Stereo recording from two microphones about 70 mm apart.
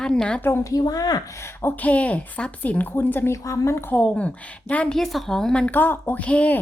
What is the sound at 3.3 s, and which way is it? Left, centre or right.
Speech, left.